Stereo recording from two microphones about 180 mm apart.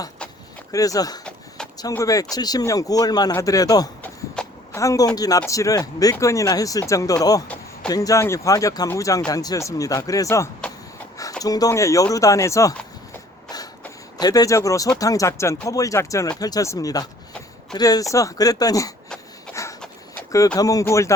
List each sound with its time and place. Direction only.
0.7 s speech: 20° left (ahead or behind)
4.0 s a sound: 10° left (ahead or behind)
5.1 s speech: 20° left (ahead or behind)
14.2 s speech: 20° left (ahead or behind)
19.6 s a sound: 15° left (ahead or behind)
20.6 s speech: 20° left (ahead or behind)